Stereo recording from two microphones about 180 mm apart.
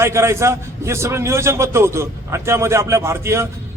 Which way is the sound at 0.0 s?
15° right (ahead or behind).